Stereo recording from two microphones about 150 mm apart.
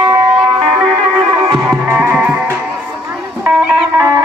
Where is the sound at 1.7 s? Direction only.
10° right (ahead or behind).